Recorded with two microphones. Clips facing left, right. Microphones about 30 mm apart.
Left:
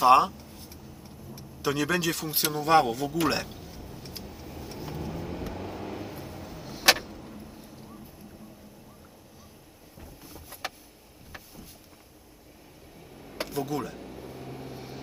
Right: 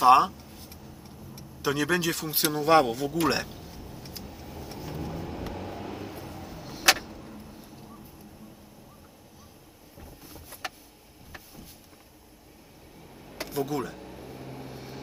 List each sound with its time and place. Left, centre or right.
0.0 s speech: centre
3.5 s vehicle: centre
10.0 s vehicle: centre
13.5 s a sound: centre